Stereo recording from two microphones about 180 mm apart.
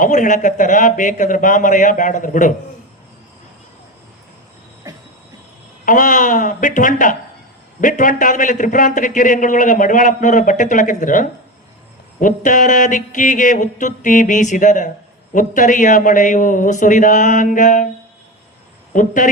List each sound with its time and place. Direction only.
0.0 s a man's voice: 45° left (ahead or behind)
4.9 s a sound: 20° right (ahead or behind)
5.8 s a man's voice: 45° left (ahead or behind)
18.9 s a man's voice: 45° left (ahead or behind)